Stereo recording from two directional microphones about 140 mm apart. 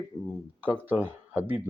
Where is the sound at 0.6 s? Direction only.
15° right (ahead or behind).